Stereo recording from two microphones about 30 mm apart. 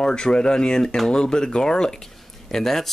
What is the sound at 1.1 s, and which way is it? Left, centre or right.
Speech, left.